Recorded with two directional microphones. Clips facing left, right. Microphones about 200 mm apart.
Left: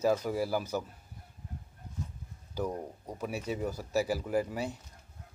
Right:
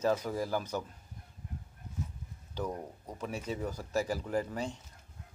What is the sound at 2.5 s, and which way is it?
Speech, 10° left (ahead or behind).